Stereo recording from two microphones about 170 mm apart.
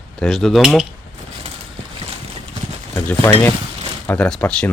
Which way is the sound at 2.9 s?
15° left (ahead or behind).